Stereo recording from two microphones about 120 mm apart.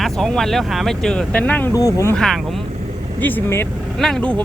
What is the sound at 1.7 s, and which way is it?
Speech, 25° left (ahead or behind).